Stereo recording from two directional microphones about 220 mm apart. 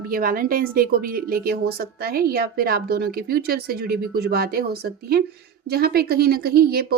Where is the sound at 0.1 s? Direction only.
40° right (ahead or behind).